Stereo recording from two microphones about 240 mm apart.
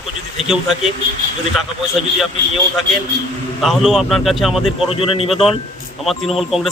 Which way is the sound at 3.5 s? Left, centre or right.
Centre.